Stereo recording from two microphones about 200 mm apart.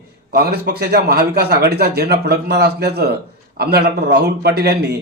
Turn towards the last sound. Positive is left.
turn(degrees=-55)  # may be behind; listen again after turning